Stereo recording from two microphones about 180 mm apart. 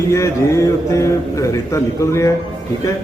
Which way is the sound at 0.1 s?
15° left (ahead or behind).